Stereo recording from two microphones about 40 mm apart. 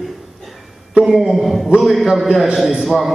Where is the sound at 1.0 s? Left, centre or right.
Centre.